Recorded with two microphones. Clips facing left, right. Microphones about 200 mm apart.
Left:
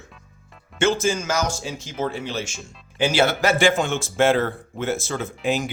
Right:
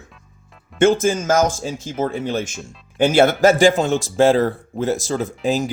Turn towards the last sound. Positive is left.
turn(degrees=-40)  # may be behind; listen again after turning